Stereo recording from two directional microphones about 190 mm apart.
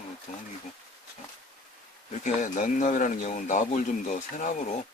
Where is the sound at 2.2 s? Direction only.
40° left (ahead or behind).